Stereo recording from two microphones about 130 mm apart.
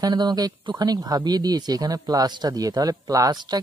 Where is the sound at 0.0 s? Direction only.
35° right (ahead or behind).